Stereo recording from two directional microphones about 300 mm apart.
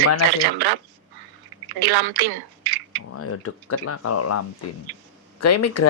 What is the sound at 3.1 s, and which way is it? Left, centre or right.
Speech, left.